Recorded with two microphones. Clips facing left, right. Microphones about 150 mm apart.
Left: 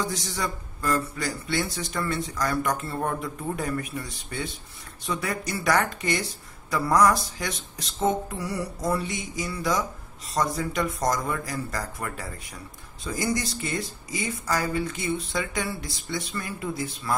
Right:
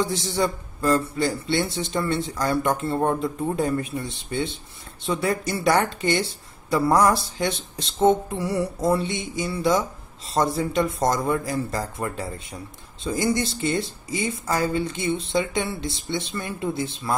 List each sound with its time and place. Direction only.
0.0 s speech: 25° right (ahead or behind)